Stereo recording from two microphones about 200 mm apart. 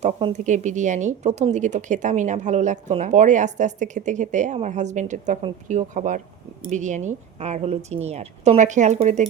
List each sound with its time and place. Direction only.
0.0 s speech: 30° right (ahead or behind)